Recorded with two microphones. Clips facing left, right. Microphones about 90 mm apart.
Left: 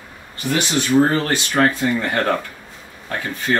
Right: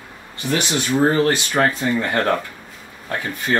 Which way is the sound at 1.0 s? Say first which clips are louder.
Right 2 dB; 15° right (ahead or behind).